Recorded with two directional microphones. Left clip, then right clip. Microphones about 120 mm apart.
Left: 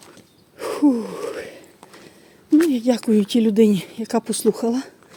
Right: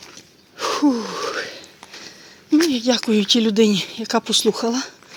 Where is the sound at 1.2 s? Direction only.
35° left (ahead or behind).